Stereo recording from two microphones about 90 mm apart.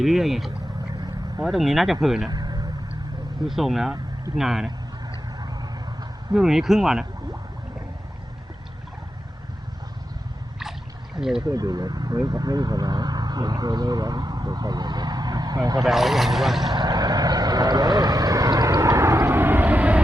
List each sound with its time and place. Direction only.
0.0 s speech: centre (ahead or behind)
2.3 s vehicle: 50° right (ahead or behind)
3.4 s speech: centre (ahead or behind)
6.3 s speech: 5° right (ahead or behind)
10.6 s rowboat: 5° right (ahead or behind)
11.4 s speech: 45° right (ahead or behind)
15.8 s speech: centre (ahead or behind)
16.6 s vehicle: 50° right (ahead or behind); by 20.0 s 15° right (ahead or behind)